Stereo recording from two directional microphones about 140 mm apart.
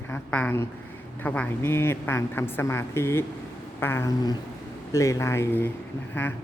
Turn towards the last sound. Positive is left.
turn(degrees=15)  # may be behind; listen again after turning